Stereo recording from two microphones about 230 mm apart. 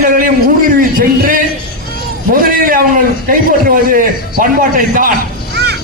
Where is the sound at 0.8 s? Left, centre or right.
Right.